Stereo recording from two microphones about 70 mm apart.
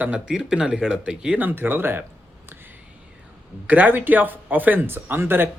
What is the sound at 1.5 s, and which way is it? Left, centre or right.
Speech, right.